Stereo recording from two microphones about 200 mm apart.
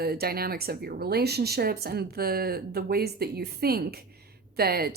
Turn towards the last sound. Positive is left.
turn(degrees=-50)  # may be behind; listen again after turning